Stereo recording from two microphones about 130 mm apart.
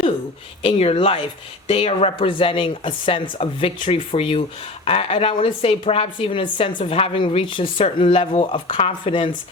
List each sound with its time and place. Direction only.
0.6 s a woman's voice: 45° left (ahead or behind)